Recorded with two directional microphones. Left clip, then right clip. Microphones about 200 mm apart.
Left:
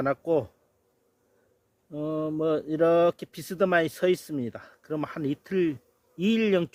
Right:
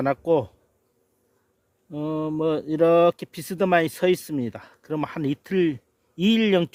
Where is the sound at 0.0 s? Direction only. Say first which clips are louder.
Right 4 dB; 45° right (ahead or behind).